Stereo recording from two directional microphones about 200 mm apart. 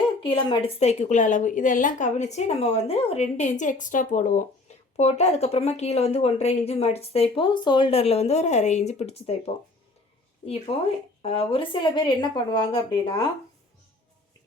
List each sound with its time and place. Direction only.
0.2 s speech: 25° left (ahead or behind)
10.4 s speech: 30° left (ahead or behind)